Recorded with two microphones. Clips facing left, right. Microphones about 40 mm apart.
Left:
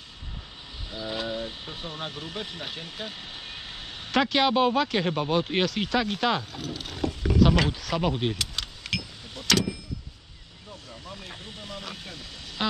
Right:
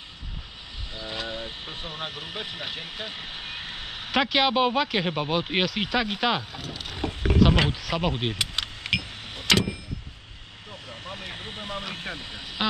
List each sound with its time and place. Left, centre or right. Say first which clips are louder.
1.0 s speech: left 2 dB; centre
7.0 s rowboat: right 1 dB; right
8.0 s a sound: left 1 dB; right
9.5 s vehicle: right 2 dB; right
10.9 s vehicle: right 5 dB; right